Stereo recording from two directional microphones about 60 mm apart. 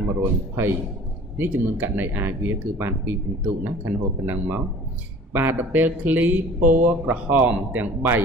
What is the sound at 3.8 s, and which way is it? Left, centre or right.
A man's voice, right.